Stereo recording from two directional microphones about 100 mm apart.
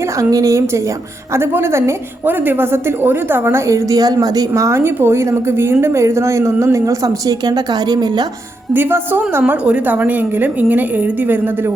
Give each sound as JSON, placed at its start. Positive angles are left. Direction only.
{"t": 0.2, "sound": "a woman's voice", "side_deg": -35}
{"t": 8.7, "sound": "a woman's voice", "side_deg": -20}